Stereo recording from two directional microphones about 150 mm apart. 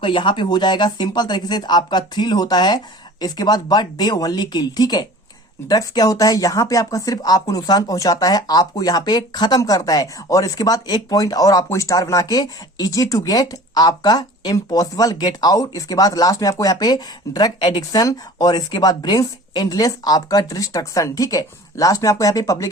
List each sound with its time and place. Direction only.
0.0 s speech: 35° left (ahead or behind)